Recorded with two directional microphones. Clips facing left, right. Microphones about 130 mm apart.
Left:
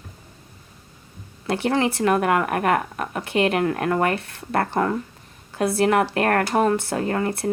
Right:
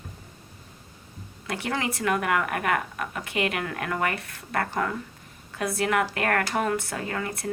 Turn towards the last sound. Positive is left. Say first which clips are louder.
# left 7 dB
turn(degrees=35)  # may be behind; listen again after turning